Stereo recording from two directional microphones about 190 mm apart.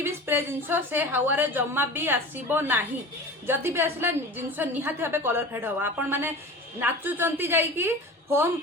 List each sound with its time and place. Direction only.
0.0 s a woman's voice: 10° right (ahead or behind)